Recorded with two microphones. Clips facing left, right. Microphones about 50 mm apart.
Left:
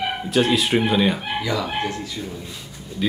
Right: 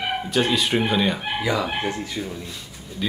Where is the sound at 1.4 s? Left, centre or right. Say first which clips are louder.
Right 2 dB; centre.